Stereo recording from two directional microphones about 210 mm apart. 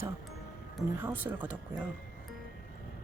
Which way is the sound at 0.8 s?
10° right (ahead or behind).